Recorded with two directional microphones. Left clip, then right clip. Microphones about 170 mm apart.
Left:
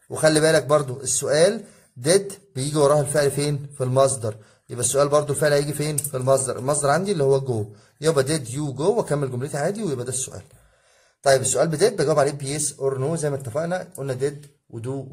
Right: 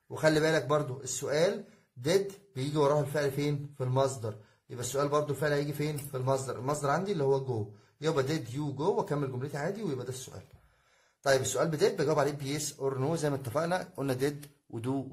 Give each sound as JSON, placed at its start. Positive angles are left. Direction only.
{"t": 0.1, "sound": "a man's voice", "side_deg": 30}
{"t": 13.5, "sound": "a man's voice", "side_deg": 0}